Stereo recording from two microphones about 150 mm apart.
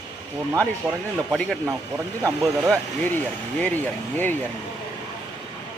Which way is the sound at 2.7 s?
10° left (ahead or behind).